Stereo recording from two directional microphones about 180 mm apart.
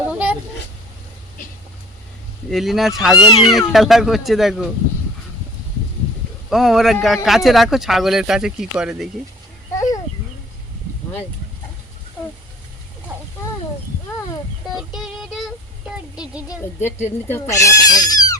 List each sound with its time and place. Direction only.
0.1 s a sound: 5° right (ahead or behind)
2.5 s speech: centre (ahead or behind)
3.2 s speech: 25° left (ahead or behind)
3.7 s speech: centre (ahead or behind)
6.5 s speech: centre (ahead or behind)
9.7 s a sound: 20° left (ahead or behind)
14.7 s music: centre (ahead or behind)
16.1 s speech: 5° right (ahead or behind)
17.2 s speech: 10° left (ahead or behind)